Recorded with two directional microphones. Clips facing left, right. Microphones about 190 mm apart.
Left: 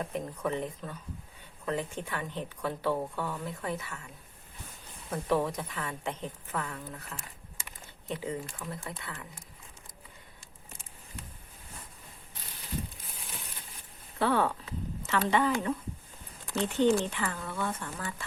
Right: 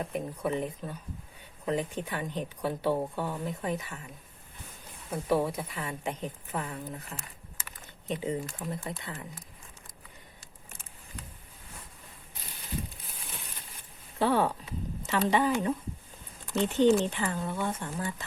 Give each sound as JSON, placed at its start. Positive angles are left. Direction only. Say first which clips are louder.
{"t": 0.0, "sound": "a woman's voice", "louder": "right 1 dB", "side_deg": -10}
{"t": 5.1, "sound": "a woman's voice", "louder": "right 1 dB", "side_deg": -10}
{"t": 14.2, "sound": "a sound", "louder": "right 1 dB", "side_deg": -15}
{"t": 15.3, "sound": "a woman's voice", "louder": "right 1 dB", "side_deg": -15}
{"t": 16.7, "sound": "speech", "louder": "right 2 dB", "side_deg": -20}